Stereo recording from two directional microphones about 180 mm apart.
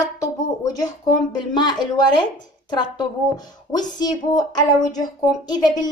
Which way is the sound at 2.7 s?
25° left (ahead or behind).